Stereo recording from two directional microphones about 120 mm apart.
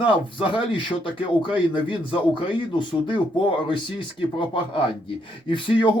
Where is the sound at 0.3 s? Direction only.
40° left (ahead or behind).